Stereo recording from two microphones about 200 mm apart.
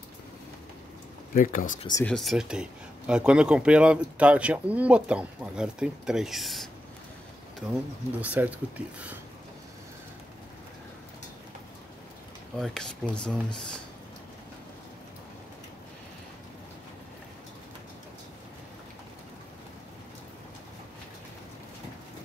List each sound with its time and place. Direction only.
1.3 s speech: 45° left (ahead or behind)
1.8 s speech: 20° left (ahead or behind)
2.0 s speech: centre (ahead or behind)
8.2 s speech: 5° right (ahead or behind)
12.5 s speech: centre (ahead or behind)